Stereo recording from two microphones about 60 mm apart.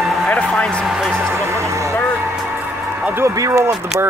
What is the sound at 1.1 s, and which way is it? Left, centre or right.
Speech, right.